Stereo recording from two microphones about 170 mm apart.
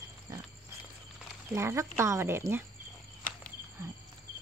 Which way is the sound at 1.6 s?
15° right (ahead or behind).